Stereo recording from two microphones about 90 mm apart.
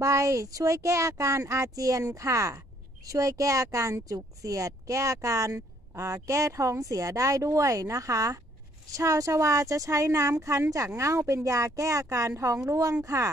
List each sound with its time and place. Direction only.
0.0 s speech: 35° right (ahead or behind)